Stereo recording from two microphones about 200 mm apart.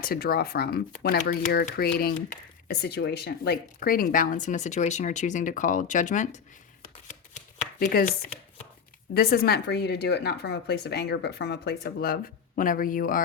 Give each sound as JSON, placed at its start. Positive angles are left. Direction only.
{"t": 0.0, "sound": "speech", "side_deg": 50}
{"t": 6.8, "sound": "chopping", "side_deg": 40}
{"t": 9.1, "sound": "speech", "side_deg": 50}